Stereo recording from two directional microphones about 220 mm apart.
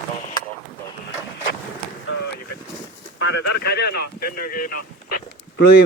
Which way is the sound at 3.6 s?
45° left (ahead or behind).